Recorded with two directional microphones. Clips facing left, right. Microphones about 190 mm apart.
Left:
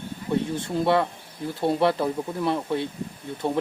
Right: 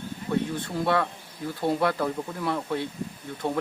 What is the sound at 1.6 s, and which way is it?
Speech, 25° left (ahead or behind).